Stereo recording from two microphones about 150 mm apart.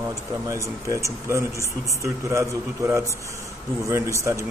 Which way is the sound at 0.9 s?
20° right (ahead or behind).